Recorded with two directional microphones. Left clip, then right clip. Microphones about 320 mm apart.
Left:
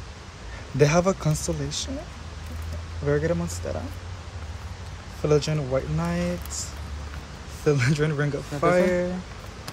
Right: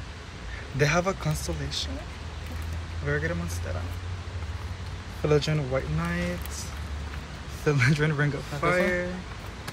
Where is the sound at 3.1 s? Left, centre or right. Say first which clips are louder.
Left 5 dB; centre.